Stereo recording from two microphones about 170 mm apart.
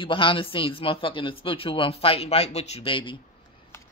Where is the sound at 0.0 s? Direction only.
30° left (ahead or behind).